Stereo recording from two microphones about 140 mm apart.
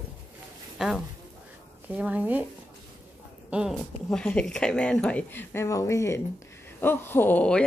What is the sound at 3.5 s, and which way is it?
Speech, 5° right (ahead or behind).